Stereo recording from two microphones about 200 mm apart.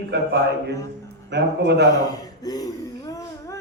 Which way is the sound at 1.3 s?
55° right (ahead or behind).